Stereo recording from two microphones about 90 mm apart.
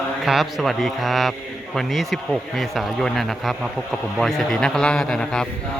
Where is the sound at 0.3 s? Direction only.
Centre (ahead or behind).